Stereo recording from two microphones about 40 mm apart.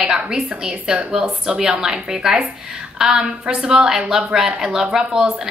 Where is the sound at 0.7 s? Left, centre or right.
Right.